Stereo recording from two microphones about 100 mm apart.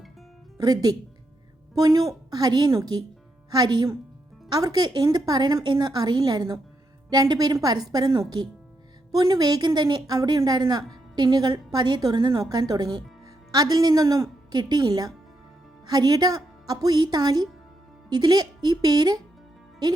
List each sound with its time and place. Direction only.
0.6 s a woman's voice: 40° right (ahead or behind)